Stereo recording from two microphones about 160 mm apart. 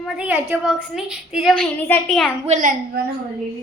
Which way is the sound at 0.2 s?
5° right (ahead or behind).